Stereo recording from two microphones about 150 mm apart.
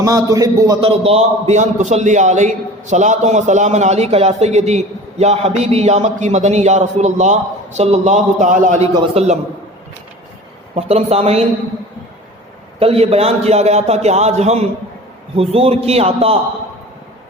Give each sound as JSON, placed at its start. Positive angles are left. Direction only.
{"t": 0.0, "sound": "a man's voice", "side_deg": -25}
{"t": 0.8, "sound": "a man's voice", "side_deg": -40}
{"t": 8.8, "sound": "a man's voice", "side_deg": -45}
{"t": 10.8, "sound": "a man's voice", "side_deg": -45}
{"t": 12.8, "sound": "a man's voice", "side_deg": -40}